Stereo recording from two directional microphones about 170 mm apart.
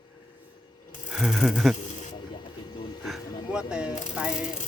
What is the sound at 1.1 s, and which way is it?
Speech, centre (ahead or behind).